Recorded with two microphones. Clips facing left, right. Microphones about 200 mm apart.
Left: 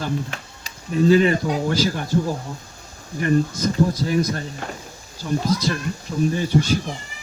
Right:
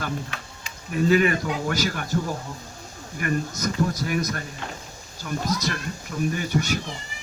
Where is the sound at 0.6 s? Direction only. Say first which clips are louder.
Left 5 dB; 30° left (ahead or behind).